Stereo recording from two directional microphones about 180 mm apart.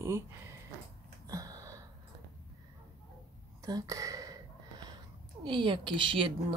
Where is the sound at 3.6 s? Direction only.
20° right (ahead or behind).